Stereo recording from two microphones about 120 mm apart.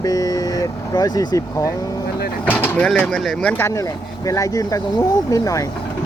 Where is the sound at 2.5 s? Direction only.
15° left (ahead or behind).